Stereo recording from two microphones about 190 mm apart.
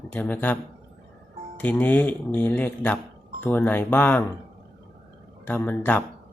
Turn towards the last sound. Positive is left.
turn(degrees=10)  # may be behind; listen again after turning